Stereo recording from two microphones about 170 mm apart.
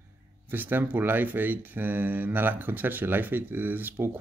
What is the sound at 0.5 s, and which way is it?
Speech, 10° right (ahead or behind).